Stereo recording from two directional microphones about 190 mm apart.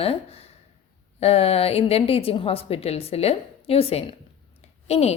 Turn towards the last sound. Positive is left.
turn(degrees=35)  # may be behind; listen again after turning